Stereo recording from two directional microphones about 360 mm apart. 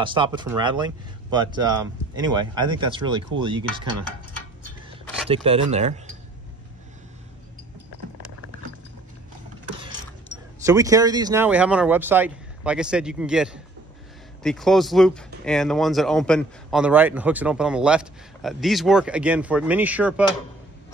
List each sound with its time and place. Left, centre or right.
0.0 s speech: centre
5.3 s speech: centre
10.6 s speech: centre